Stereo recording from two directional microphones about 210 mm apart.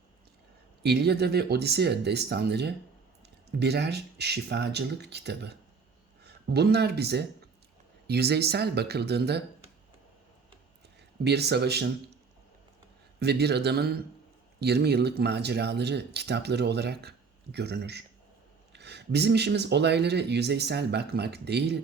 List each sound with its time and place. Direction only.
0.8 s speech: 50° right (ahead or behind)
11.2 s speech: 50° right (ahead or behind)
13.1 s speech: 50° right (ahead or behind)